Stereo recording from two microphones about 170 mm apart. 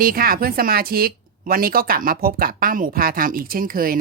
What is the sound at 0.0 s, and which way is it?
Speech, 60° right (ahead or behind).